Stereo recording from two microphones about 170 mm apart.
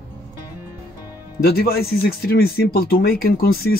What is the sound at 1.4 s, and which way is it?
Speech, 65° left (ahead or behind).